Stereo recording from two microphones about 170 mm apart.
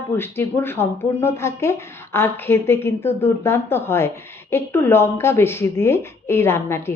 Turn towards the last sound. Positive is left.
turn(degrees=15)  # may be behind; listen again after turning